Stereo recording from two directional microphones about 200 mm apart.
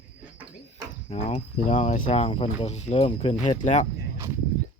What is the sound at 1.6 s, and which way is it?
Speech, 35° left (ahead or behind).